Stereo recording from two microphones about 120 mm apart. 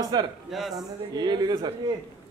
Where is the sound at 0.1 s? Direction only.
35° right (ahead or behind).